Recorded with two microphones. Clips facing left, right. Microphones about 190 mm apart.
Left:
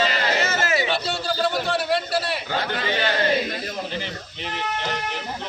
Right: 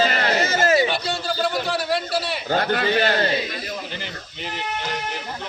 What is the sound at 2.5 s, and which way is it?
Speech, 45° right (ahead or behind).